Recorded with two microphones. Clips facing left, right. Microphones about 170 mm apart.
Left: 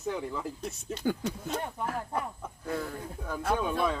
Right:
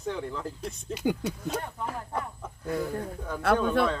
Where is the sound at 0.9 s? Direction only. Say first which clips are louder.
Right 2 dB; 15° right (ahead or behind).